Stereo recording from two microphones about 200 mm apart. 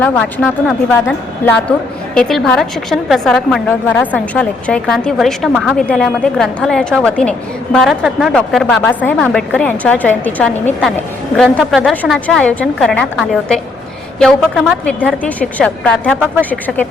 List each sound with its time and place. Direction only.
0.0 s a woman's voice: 5° left (ahead or behind)